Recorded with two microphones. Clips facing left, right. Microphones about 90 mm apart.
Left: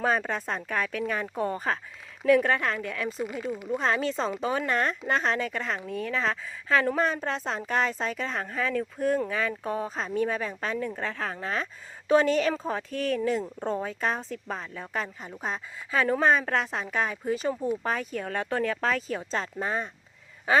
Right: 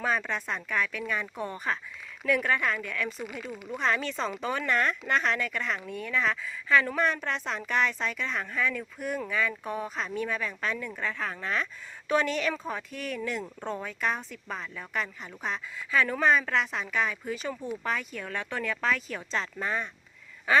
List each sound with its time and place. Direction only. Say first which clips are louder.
0.0 s speech: left 3 dB; 40° left (ahead or behind)